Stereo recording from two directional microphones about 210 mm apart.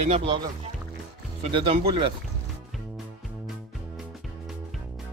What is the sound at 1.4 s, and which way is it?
Speech, 25° right (ahead or behind).